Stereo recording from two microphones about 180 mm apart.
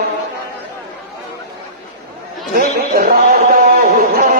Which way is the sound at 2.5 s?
50° right (ahead or behind).